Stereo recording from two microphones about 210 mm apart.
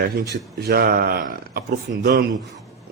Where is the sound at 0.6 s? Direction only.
50° right (ahead or behind).